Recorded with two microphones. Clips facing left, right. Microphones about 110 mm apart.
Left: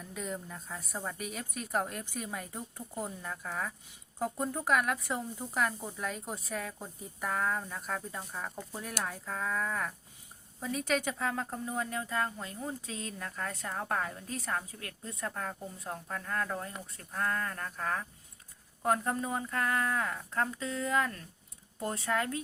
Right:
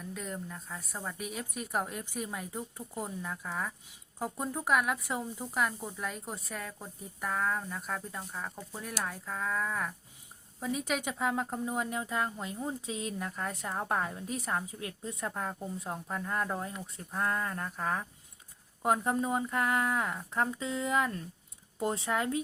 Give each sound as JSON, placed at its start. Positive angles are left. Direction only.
{"t": 0.0, "sound": "speech", "side_deg": 0}